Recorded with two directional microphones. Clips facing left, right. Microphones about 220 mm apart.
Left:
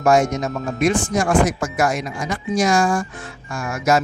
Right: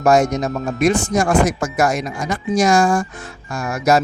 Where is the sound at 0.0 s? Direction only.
40° right (ahead or behind).